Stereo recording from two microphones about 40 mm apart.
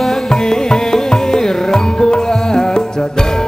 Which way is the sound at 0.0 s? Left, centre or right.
Centre.